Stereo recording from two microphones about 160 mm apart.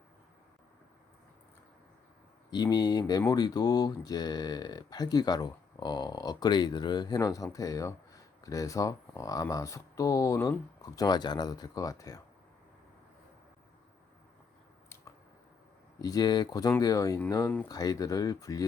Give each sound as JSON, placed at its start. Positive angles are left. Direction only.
{"t": 2.5, "sound": "speech", "side_deg": 25}
{"t": 16.0, "sound": "speech", "side_deg": 25}